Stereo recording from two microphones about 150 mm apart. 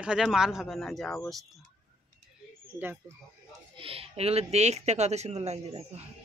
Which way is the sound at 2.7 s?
15° right (ahead or behind).